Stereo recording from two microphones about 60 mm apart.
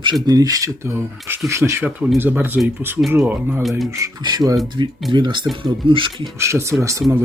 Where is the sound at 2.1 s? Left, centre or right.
Right.